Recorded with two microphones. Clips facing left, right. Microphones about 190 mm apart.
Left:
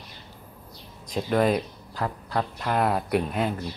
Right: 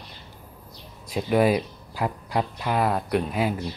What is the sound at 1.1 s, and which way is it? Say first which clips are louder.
Speech: right 2 dB; 5° right (ahead or behind).